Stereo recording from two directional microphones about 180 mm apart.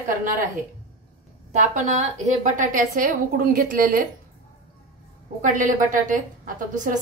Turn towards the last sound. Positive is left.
turn(degrees=-45)  # may be behind; listen again after turning